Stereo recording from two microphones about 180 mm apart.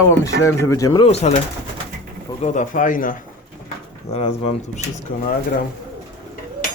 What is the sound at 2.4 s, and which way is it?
Speech, 45° left (ahead or behind).